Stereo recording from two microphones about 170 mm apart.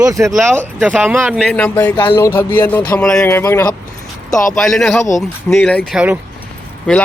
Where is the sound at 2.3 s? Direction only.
15° left (ahead or behind).